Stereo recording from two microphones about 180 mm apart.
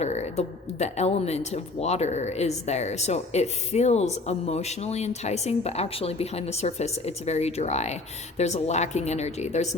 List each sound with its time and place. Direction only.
0.0 s speech: 35° left (ahead or behind)